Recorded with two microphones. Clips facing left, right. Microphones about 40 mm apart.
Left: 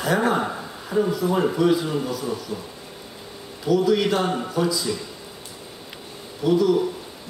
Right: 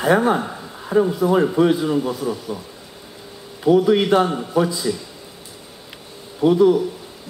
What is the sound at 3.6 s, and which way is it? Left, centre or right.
A man's voice, right.